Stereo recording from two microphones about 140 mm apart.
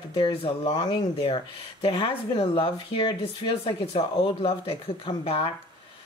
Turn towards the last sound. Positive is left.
turn(degrees=40)  # may be behind; listen again after turning